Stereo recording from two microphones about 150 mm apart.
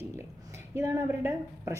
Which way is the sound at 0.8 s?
15° right (ahead or behind).